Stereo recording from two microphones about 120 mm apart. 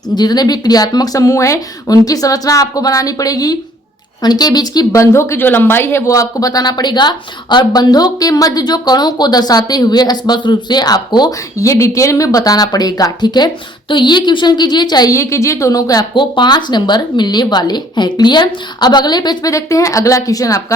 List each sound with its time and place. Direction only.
0.1 s speech: 35° left (ahead or behind)